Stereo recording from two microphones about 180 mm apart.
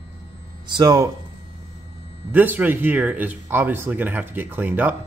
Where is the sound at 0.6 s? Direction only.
25° right (ahead or behind).